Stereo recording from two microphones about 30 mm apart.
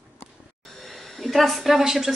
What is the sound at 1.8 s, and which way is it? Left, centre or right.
Speech, centre.